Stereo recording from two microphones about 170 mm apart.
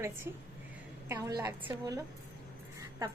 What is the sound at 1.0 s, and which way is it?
Speech, 15° right (ahead or behind).